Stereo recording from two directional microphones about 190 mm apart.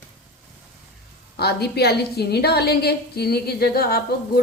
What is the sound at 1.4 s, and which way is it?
A woman's voice, 60° left (ahead or behind).